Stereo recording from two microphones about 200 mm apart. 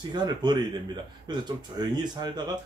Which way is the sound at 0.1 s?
20° right (ahead or behind).